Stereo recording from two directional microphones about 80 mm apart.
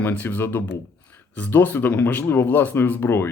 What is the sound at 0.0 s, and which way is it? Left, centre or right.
Speech, left.